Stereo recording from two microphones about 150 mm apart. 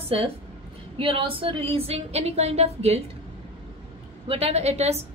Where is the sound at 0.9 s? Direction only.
35° right (ahead or behind).